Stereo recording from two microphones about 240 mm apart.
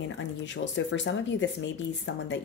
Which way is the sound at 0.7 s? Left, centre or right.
Left.